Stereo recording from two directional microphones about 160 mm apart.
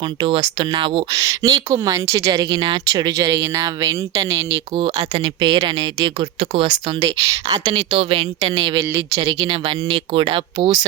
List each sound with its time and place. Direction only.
0.2 s speech: 30° right (ahead or behind)
1.1 s speech: 20° right (ahead or behind)
4.7 s speech: 30° right (ahead or behind)
7.0 s speech: 20° right (ahead or behind)